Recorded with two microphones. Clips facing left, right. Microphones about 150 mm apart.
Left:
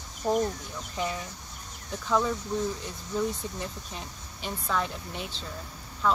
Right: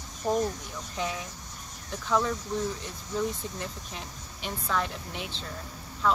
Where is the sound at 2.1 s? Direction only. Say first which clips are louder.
Left 1 dB; centre (ahead or behind).